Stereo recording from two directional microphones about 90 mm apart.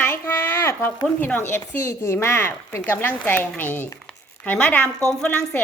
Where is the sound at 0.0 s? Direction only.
25° left (ahead or behind).